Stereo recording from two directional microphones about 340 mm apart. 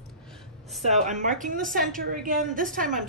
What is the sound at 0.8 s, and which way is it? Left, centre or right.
A woman's voice, right.